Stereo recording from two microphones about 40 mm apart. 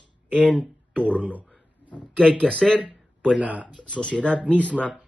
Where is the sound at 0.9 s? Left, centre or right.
Left.